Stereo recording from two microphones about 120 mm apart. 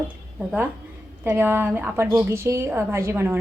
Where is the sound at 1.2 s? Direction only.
20° right (ahead or behind).